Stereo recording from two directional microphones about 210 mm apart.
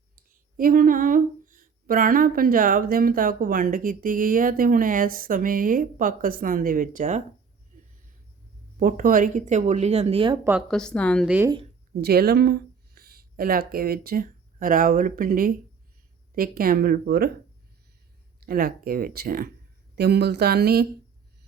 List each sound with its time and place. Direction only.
0.2 s speech: 40° right (ahead or behind)
8.8 s speech: 40° right (ahead or behind)
10.7 s a woman's voice: 5° left (ahead or behind)
11.9 s speech: 45° right (ahead or behind)
18.3 s speech: 45° right (ahead or behind)